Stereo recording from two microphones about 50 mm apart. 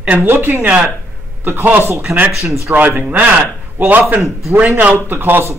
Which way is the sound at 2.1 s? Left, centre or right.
Right.